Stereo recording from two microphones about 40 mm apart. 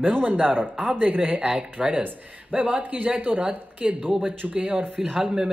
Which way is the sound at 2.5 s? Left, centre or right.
Right.